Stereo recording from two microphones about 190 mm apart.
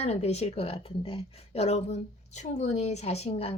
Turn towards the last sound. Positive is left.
turn(degrees=35)  # may be behind; listen again after turning